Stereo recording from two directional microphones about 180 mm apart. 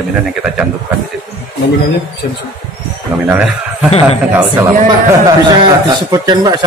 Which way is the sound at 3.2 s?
5° right (ahead or behind).